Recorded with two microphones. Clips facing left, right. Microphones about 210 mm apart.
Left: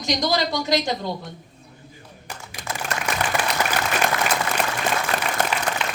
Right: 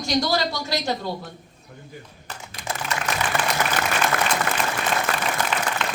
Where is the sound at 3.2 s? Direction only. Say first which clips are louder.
Left 3 dB; 55° left (ahead or behind).